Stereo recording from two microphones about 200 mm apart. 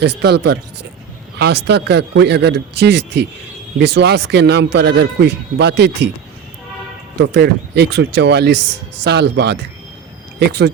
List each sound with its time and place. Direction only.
0.0 s speech: 55° right (ahead or behind)
7.2 s speech: 55° right (ahead or behind)